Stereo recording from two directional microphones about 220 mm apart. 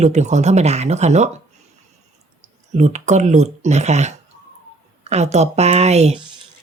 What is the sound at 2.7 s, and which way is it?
Speech, 30° right (ahead or behind).